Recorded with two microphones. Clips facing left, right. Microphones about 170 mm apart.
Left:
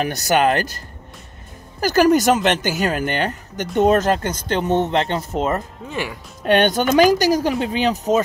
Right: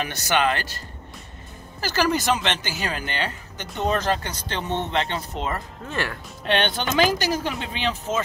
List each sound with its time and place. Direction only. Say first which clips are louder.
0.0 s speech: left 5 dB; 45° left (ahead or behind)
5.9 s speech: left 1 dB; 10° left (ahead or behind)
6.4 s speech: left 7 dB; 45° left (ahead or behind)